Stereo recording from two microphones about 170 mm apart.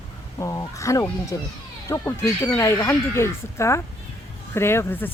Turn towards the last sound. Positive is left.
turn(degrees=10)  # may be behind; listen again after turning